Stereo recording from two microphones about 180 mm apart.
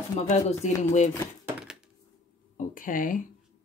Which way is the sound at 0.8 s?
40° left (ahead or behind).